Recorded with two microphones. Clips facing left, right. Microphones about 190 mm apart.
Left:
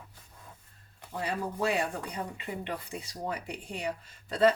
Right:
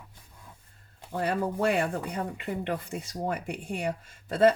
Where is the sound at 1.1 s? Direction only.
60° right (ahead or behind).